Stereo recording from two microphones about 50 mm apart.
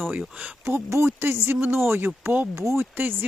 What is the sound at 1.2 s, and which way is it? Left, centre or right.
Speech, right.